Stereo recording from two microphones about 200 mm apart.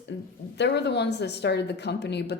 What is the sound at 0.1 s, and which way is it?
Speech, 60° left (ahead or behind).